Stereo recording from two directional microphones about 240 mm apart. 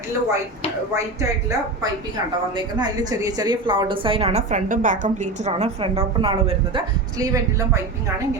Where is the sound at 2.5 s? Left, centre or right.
Centre.